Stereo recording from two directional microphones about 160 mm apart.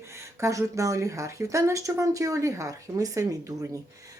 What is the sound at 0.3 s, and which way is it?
A child's voice, 20° right (ahead or behind).